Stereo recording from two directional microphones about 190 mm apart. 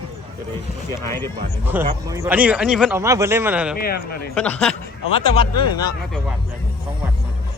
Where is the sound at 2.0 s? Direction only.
15° right (ahead or behind).